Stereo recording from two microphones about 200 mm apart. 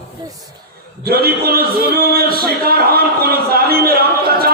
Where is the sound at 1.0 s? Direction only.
50° right (ahead or behind).